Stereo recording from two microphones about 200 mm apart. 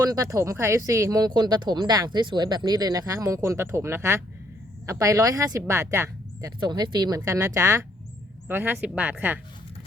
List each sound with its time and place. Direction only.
0.1 s speech: 15° right (ahead or behind)